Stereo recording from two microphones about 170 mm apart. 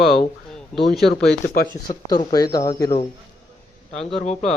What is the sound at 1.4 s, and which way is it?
Speech, 65° left (ahead or behind).